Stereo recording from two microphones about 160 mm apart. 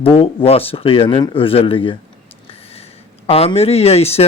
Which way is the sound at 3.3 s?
40° left (ahead or behind).